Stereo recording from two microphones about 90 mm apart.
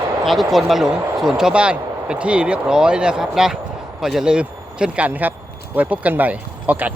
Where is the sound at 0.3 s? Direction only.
Centre (ahead or behind).